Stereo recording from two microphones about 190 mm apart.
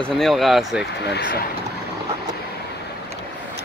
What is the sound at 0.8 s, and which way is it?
Speech, 60° left (ahead or behind).